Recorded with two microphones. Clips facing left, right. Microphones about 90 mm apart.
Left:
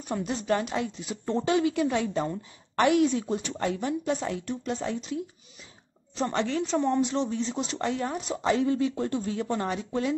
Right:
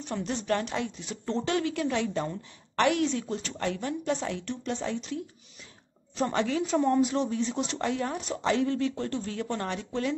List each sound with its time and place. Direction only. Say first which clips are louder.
0.0 s a woman's voice: left 2 dB; 10° left (ahead or behind)